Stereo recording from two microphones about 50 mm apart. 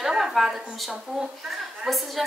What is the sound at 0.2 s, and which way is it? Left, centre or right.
A woman's voice, centre.